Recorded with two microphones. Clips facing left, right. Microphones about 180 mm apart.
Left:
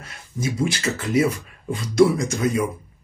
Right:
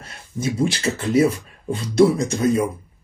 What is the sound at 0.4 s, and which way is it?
Speech, 30° right (ahead or behind).